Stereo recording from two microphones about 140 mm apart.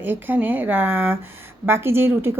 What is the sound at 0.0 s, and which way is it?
A woman's voice, 15° right (ahead or behind).